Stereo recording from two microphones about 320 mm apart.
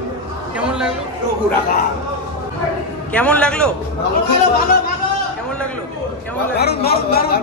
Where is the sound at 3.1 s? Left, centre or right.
Centre.